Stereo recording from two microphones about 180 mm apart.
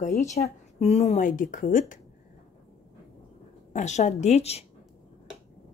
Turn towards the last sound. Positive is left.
turn(degrees=35)  # may be behind; listen again after turning